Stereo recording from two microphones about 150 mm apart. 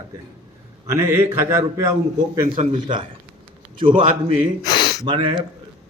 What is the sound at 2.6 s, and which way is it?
Speech, 50° right (ahead or behind).